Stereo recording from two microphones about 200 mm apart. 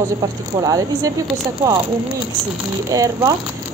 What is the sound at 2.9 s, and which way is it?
Speech, 15° right (ahead or behind).